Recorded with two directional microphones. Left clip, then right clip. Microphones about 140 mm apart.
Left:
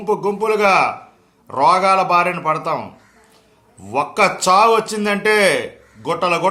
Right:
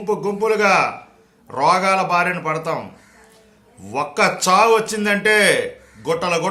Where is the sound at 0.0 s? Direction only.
15° left (ahead or behind).